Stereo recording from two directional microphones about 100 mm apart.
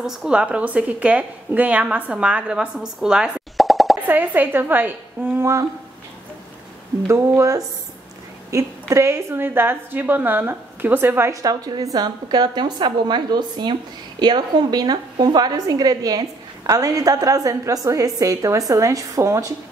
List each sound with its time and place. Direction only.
0.0 s a woman's voice: 5° right (ahead or behind)
4.1 s a woman's voice: 15° right (ahead or behind)
7.1 s a woman's voice: 30° right (ahead or behind)
11.4 s a woman's voice: 40° right (ahead or behind)